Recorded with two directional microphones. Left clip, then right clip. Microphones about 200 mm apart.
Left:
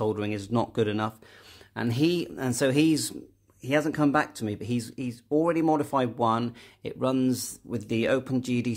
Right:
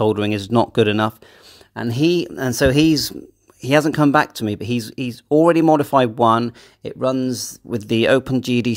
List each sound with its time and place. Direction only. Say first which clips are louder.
0.0 s speech: right 10 dB; 40° right (ahead or behind)